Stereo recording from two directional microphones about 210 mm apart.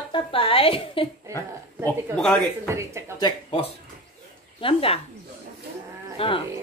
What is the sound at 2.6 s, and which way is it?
Speech, 15° right (ahead or behind).